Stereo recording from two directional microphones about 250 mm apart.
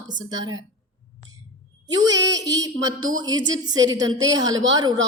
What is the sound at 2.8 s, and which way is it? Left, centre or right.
Speech, right.